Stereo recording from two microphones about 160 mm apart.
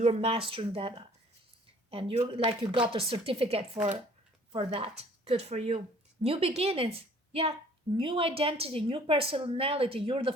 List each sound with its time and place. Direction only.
0.0 s a woman's voice: 40° right (ahead or behind)